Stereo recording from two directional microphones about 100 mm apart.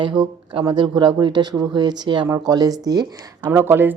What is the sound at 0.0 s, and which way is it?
Speech, 55° right (ahead or behind).